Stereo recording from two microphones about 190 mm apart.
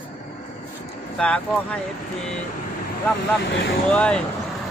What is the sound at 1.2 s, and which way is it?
Speech, 5° left (ahead or behind).